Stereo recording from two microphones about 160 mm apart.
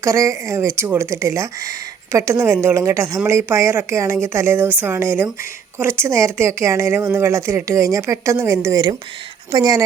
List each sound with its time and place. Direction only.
0.0 s a woman's voice: 20° right (ahead or behind)